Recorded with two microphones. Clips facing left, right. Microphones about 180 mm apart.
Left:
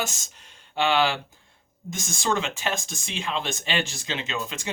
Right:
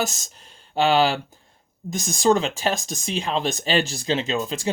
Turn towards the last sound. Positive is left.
turn(degrees=-35)  # may be behind; listen again after turning